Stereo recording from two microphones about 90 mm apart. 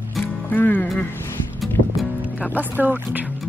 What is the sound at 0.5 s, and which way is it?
Speech, 20° left (ahead or behind).